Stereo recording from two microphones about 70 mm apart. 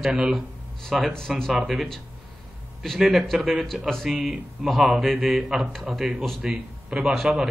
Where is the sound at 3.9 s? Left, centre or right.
Centre.